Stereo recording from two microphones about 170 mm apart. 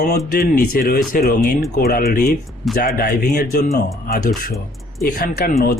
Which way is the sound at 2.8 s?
60° left (ahead or behind).